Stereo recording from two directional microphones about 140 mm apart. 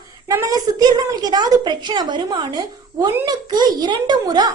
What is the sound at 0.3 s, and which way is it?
A woman's voice, 25° right (ahead or behind).